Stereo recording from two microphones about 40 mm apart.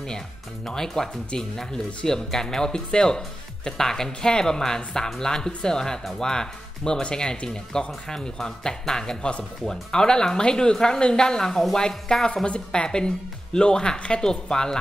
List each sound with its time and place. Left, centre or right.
0.7 s a woman's voice: centre